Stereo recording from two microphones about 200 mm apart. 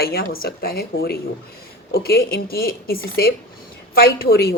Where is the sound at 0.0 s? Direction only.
50° left (ahead or behind).